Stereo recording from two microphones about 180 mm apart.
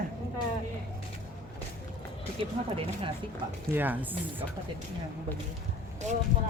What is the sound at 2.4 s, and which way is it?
Speech, 30° right (ahead or behind).